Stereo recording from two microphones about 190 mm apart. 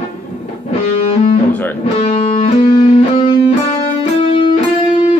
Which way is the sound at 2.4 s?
30° left (ahead or behind).